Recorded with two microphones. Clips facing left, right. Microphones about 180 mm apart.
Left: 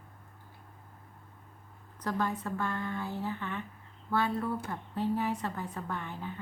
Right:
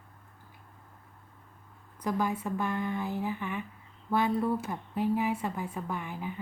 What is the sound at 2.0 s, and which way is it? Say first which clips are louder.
A woman's voice: right 2 dB; 10° right (ahead or behind).